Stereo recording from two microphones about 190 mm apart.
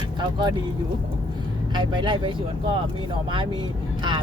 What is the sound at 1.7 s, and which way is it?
Speech, 25° right (ahead or behind).